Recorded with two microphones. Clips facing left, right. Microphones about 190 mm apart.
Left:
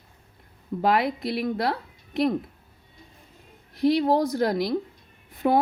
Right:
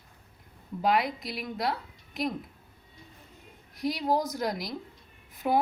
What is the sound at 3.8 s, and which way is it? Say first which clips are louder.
Speech: left 7 dB; 60° left (ahead or behind).